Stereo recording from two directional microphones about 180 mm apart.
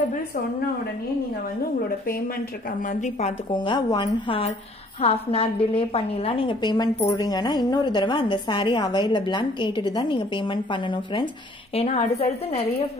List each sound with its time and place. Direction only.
2.9 s a woman's voice: 40° left (ahead or behind)
3.5 s a woman's voice: 25° left (ahead or behind)